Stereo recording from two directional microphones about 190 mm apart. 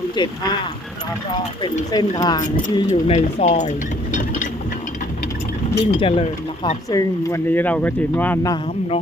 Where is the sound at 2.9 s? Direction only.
40° left (ahead or behind).